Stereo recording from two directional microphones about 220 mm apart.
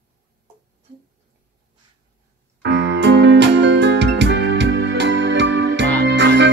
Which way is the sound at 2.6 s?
55° right (ahead or behind).